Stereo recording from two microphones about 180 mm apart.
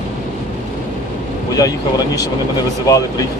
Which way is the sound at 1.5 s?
20° left (ahead or behind).